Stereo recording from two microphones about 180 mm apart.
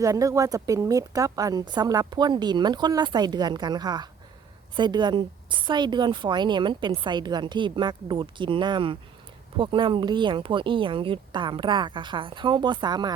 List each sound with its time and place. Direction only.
0.0 s a woman's voice: 20° right (ahead or behind)